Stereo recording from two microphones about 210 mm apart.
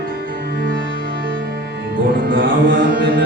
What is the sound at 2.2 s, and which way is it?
Music, 50° right (ahead or behind).